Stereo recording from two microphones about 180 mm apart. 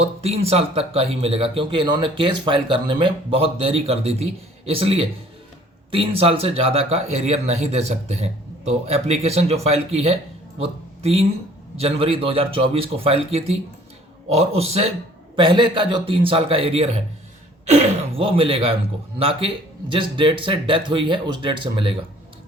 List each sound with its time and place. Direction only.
0.0 s speech: 35° right (ahead or behind)
18.2 s speech: 30° right (ahead or behind)
19.9 s speech: 25° right (ahead or behind)